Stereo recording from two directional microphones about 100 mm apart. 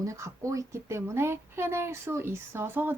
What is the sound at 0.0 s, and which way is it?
Speech, 30° right (ahead or behind).